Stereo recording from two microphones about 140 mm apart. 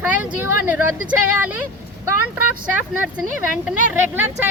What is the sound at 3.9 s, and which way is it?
Speech, 15° right (ahead or behind).